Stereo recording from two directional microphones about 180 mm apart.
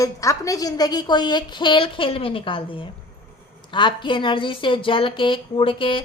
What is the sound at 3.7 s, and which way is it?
A woman's voice, 25° left (ahead or behind).